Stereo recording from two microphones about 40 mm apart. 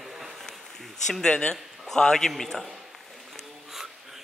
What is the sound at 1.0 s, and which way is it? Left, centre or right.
Speech, centre.